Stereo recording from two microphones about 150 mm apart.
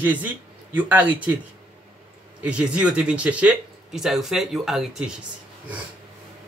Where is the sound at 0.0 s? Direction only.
10° right (ahead or behind).